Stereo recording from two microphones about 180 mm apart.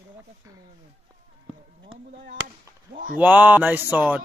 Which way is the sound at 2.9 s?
50° right (ahead or behind).